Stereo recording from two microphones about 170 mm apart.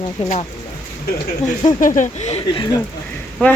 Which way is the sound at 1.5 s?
50° left (ahead or behind).